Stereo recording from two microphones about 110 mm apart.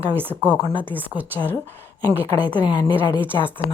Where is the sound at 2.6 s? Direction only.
40° left (ahead or behind).